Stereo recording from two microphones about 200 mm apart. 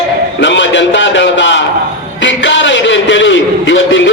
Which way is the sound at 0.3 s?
65° left (ahead or behind).